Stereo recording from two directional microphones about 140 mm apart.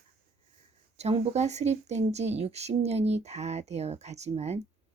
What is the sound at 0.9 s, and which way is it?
Speech, 50° right (ahead or behind).